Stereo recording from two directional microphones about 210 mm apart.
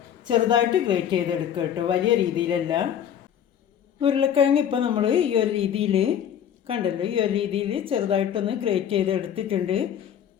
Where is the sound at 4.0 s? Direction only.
25° right (ahead or behind).